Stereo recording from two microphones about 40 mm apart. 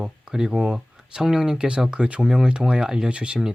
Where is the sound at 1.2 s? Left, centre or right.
Centre.